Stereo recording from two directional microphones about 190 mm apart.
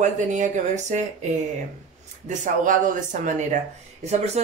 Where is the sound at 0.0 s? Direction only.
40° right (ahead or behind).